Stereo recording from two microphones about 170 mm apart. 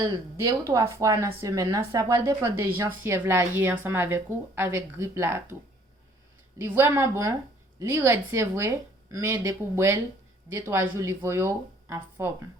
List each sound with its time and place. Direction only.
0.0 s speech: 25° right (ahead or behind)
6.6 s speech: 15° right (ahead or behind)